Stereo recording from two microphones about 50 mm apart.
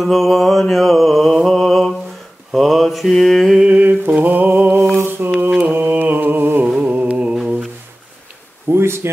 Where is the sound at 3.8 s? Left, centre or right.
Right.